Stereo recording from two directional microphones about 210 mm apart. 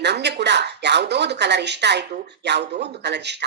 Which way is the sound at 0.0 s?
55° right (ahead or behind).